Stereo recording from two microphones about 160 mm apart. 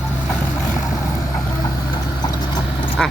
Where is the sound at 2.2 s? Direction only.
25° left (ahead or behind).